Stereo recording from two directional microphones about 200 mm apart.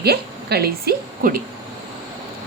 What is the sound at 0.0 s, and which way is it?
A woman's voice, 55° right (ahead or behind).